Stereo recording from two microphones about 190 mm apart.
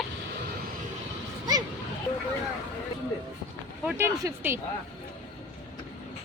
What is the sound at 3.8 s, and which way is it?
Speech, 10° right (ahead or behind).